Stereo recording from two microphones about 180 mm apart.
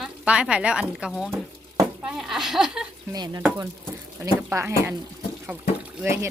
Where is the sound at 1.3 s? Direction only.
15° right (ahead or behind).